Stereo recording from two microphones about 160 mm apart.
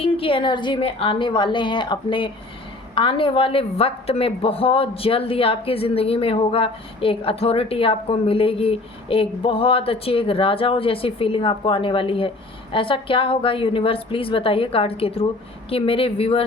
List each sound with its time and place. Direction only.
0.0 s a woman's voice: 35° left (ahead or behind)